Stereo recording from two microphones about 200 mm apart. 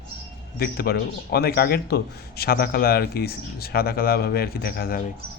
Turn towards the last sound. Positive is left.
turn(degrees=50)  # may be behind; listen again after turning